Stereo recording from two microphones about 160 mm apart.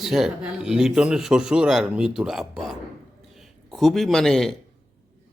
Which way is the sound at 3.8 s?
Centre (ahead or behind).